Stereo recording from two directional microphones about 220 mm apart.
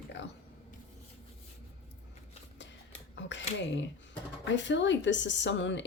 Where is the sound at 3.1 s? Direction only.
55° left (ahead or behind).